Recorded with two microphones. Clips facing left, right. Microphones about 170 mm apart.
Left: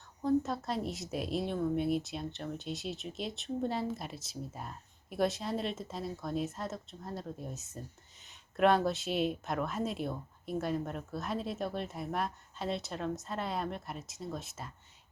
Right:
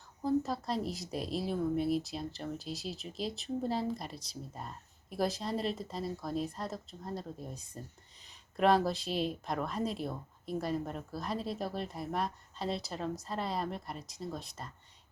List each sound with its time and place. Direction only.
0.2 s speech: centre (ahead or behind)